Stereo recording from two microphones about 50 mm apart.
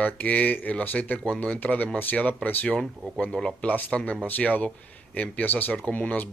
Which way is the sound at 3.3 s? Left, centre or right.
Centre.